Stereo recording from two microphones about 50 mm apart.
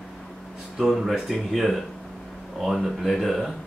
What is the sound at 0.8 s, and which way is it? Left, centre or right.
Speech, centre.